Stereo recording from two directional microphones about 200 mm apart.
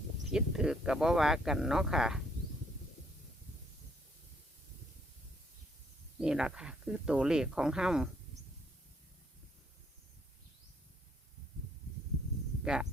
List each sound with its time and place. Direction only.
0.3 s speech: 5° right (ahead or behind)
6.1 s speech: 5° right (ahead or behind)
12.6 s speech: 5° right (ahead or behind)